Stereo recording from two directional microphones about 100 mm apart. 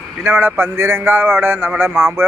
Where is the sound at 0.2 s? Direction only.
20° right (ahead or behind).